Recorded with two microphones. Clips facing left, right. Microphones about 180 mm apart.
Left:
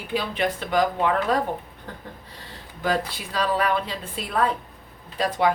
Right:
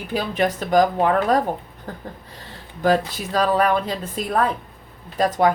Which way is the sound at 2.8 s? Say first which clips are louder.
Right 6 dB; 45° right (ahead or behind).